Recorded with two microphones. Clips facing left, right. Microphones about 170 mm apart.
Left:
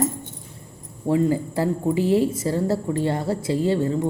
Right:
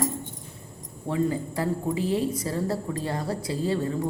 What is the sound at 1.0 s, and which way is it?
A woman's voice, 30° left (ahead or behind).